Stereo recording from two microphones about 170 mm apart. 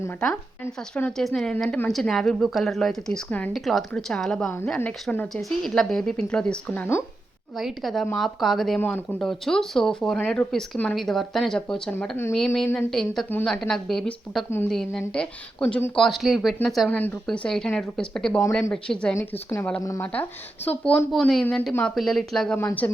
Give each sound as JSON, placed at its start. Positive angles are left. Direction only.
{"t": 0.2, "sound": "speech", "side_deg": 10}
{"t": 7.6, "sound": "speech", "side_deg": 0}
{"t": 12.5, "sound": "speech", "side_deg": 0}
{"t": 19.1, "sound": "a woman's voice", "side_deg": 15}
{"t": 20.7, "sound": "speech", "side_deg": 5}
{"t": 21.7, "sound": "a woman's voice", "side_deg": 10}